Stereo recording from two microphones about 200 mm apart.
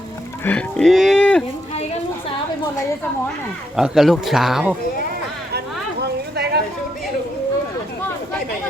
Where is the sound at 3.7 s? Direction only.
Centre (ahead or behind).